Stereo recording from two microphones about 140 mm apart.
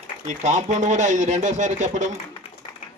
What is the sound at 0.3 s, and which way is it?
Speech, 60° right (ahead or behind).